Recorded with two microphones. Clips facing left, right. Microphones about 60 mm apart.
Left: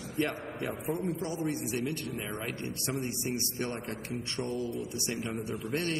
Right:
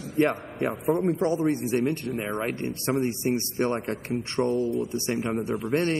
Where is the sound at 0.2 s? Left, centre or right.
Right.